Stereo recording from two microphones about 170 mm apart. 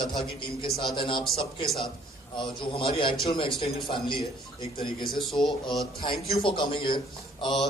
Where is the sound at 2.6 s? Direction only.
30° left (ahead or behind).